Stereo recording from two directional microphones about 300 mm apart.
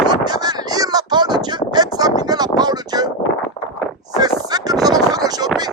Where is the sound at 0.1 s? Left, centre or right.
Centre.